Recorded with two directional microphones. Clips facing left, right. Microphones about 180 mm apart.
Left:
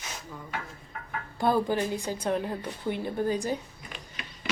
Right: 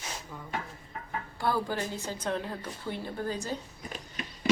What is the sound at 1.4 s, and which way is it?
A woman's voice, 20° left (ahead or behind).